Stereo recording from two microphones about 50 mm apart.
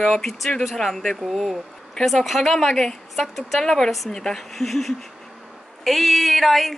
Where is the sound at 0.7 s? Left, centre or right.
Centre.